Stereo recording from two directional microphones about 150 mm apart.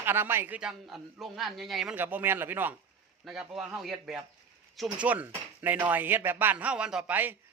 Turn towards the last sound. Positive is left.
turn(degrees=-10)  # may be behind; listen again after turning